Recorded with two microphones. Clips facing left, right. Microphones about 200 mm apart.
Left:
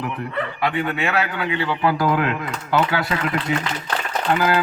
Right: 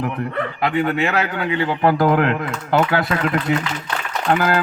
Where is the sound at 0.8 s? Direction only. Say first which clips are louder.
Right 5 dB; 40° right (ahead or behind).